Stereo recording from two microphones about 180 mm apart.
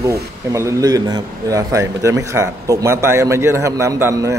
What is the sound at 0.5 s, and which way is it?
Speech, 20° right (ahead or behind).